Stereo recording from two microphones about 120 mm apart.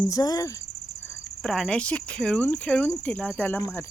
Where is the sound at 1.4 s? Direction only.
5° left (ahead or behind).